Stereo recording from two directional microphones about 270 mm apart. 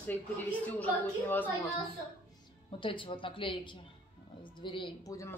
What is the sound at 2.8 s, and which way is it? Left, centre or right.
Speech, centre.